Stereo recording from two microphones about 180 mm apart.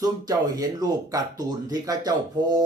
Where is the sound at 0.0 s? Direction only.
20° right (ahead or behind).